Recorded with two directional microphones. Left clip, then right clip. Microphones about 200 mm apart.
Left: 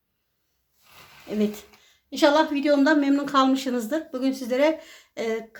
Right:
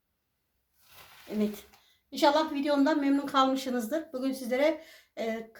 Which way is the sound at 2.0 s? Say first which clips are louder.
Left 6 dB; 35° left (ahead or behind).